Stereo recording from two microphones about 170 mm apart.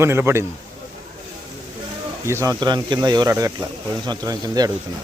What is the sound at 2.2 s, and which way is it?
Speech, 15° right (ahead or behind).